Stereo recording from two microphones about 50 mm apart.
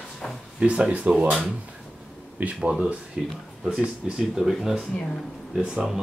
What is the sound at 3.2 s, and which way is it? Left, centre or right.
Speech, right.